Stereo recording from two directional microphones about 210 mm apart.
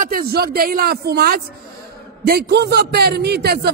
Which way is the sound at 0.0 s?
45° right (ahead or behind).